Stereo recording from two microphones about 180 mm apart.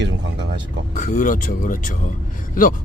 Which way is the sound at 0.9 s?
45° left (ahead or behind).